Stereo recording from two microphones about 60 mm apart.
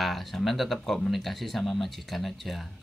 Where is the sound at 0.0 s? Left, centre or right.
Centre.